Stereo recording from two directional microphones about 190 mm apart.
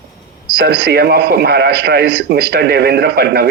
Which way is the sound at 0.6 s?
60° right (ahead or behind).